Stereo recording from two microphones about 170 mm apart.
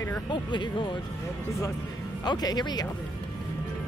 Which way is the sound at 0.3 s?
25° left (ahead or behind).